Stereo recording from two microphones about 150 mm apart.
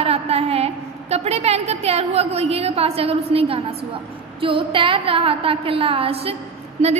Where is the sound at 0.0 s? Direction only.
40° right (ahead or behind).